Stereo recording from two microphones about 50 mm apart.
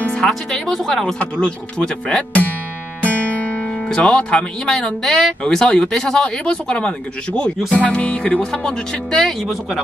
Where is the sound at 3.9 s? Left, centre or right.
Centre.